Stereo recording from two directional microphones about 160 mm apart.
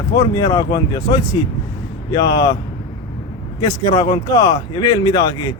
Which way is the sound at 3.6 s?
25° left (ahead or behind).